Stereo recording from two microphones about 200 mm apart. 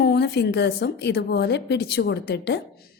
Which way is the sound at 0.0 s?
55° left (ahead or behind).